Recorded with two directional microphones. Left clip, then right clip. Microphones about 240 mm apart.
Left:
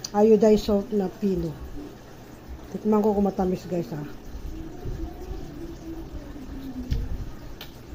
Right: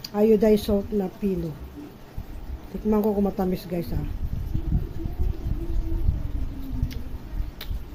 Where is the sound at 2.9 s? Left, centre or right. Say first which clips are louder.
Left 1 dB; centre.